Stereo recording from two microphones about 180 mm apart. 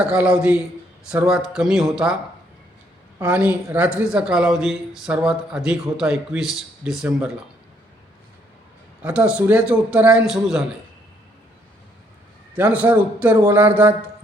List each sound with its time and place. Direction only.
0.1 s a man's voice: 5° right (ahead or behind)
3.2 s speech: 10° right (ahead or behind)
9.0 s speech: 5° right (ahead or behind)
12.5 s a man's voice: 10° right (ahead or behind)